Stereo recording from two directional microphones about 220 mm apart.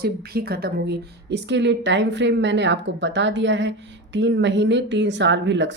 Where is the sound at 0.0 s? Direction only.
45° right (ahead or behind).